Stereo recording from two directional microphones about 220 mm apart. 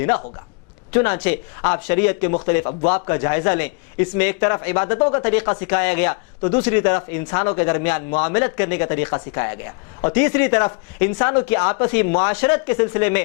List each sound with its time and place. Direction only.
0.9 s a man's voice: 15° left (ahead or behind)
2.6 s speech: 30° left (ahead or behind)
3.1 s a man's voice: 15° left (ahead or behind)
5.2 s a man's voice: 10° left (ahead or behind)